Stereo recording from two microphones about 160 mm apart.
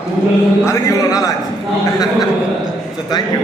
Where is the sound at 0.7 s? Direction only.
20° left (ahead or behind).